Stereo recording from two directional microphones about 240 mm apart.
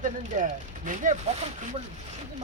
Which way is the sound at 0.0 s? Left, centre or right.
Right.